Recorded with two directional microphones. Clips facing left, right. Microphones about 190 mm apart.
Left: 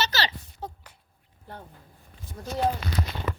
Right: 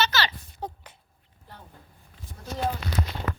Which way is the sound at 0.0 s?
35° left (ahead or behind).